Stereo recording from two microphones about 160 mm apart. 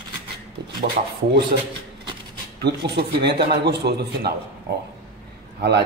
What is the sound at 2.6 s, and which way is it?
A man's voice, 90° right.